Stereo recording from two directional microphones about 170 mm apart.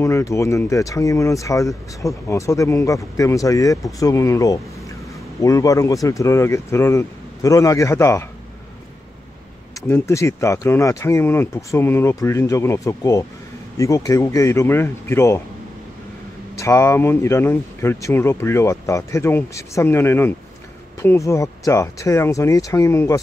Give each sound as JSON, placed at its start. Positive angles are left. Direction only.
{"t": 0.0, "sound": "speech", "side_deg": 15}
{"t": 9.8, "sound": "speech", "side_deg": 15}
{"t": 16.5, "sound": "speech", "side_deg": 15}